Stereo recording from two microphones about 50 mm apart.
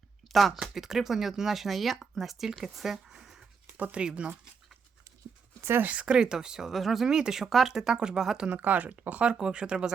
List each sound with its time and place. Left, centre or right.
0.3 s speech: centre
3.1 s a sound: centre
3.8 s speech: right
5.8 s speech: right
6.7 s speech: centre
7.1 s speech: centre
8.5 s speech: right
9.2 s speech: centre